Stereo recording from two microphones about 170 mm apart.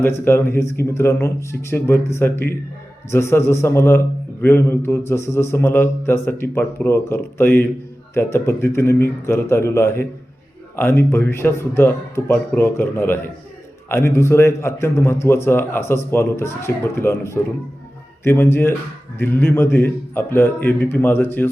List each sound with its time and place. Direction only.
0.0 s a man's voice: 15° left (ahead or behind)